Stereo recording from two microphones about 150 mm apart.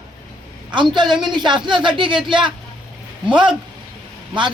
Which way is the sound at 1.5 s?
30° right (ahead or behind).